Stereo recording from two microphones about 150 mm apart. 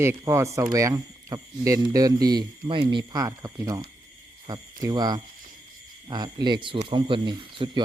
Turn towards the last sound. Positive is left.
turn(degrees=-35)  # may be behind; listen again after turning